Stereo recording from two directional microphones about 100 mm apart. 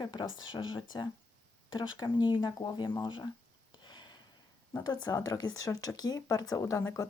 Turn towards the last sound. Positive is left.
turn(degrees=30)  # may be behind; listen again after turning